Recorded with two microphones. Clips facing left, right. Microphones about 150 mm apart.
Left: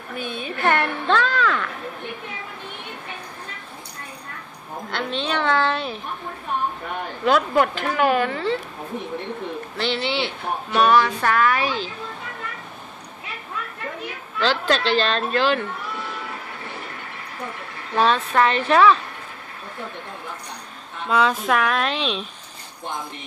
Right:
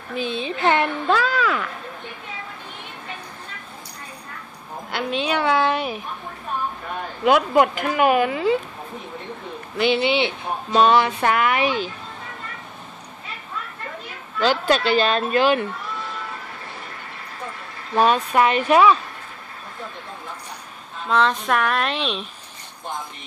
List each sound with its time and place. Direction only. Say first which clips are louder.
0.3 s speech: right 1 dB; 20° right (ahead or behind)
1.0 s a sound: even; 5° right (ahead or behind)
4.9 s speech: right 2 dB; 10° right (ahead or behind)
7.2 s speech: right 2 dB; 15° right (ahead or behind)
9.8 s speech: right 6 dB; 15° right (ahead or behind)
14.4 s speech: right 2 dB; 10° right (ahead or behind)
17.9 s speech: right 1 dB; 10° right (ahead or behind)
21.1 s speech: even; 5° left (ahead or behind)